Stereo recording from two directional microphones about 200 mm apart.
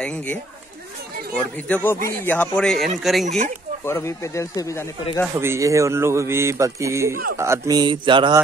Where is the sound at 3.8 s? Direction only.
15° left (ahead or behind).